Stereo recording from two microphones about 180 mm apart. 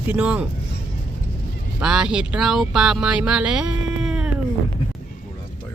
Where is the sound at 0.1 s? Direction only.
10° right (ahead or behind).